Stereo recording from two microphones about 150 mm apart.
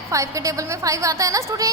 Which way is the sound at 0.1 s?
20° right (ahead or behind).